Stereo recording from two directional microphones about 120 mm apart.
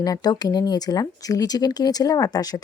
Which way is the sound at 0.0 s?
30° left (ahead or behind).